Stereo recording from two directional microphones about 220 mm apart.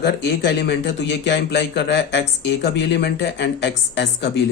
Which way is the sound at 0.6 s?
50° left (ahead or behind).